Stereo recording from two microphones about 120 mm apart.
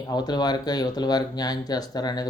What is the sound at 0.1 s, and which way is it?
Speech, 35° left (ahead or behind).